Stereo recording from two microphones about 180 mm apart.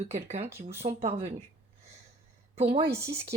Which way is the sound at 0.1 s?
35° right (ahead or behind).